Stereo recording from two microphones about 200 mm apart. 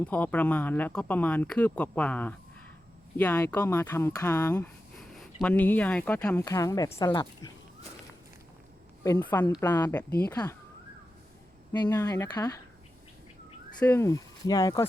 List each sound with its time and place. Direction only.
0.0 s speech: 5° left (ahead or behind)
9.0 s speech: 10° left (ahead or behind)
11.7 s speech: 20° left (ahead or behind)
13.7 s speech: 10° left (ahead or behind)